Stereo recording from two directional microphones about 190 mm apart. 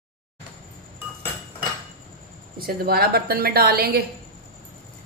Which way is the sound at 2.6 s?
55° right (ahead or behind).